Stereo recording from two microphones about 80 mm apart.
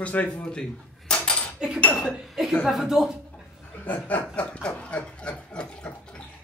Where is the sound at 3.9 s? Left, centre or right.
Left.